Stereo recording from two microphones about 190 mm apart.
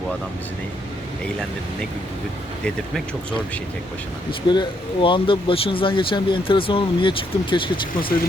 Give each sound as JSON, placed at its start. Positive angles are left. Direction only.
{"t": 4.3, "sound": "speech", "side_deg": 25}